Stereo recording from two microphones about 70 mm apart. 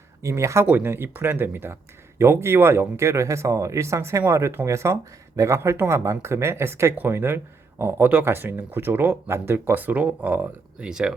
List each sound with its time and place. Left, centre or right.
0.2 s speech: right
0.7 s speech: right
10.8 s speech: centre